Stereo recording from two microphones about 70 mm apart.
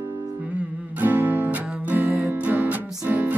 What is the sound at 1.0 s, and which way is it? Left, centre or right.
Music, right.